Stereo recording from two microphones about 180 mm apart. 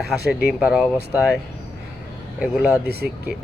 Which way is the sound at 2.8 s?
60° right (ahead or behind).